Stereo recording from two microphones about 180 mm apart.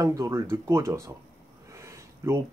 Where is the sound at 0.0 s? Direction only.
15° right (ahead or behind).